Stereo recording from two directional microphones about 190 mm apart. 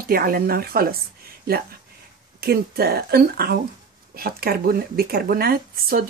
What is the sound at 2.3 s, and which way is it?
A woman's voice, 55° right (ahead or behind).